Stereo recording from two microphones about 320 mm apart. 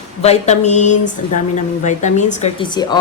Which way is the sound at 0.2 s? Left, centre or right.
Centre.